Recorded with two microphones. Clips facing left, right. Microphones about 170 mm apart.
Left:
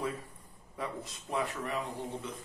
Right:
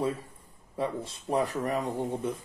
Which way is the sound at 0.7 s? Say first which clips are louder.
Right 7 dB; 30° right (ahead or behind).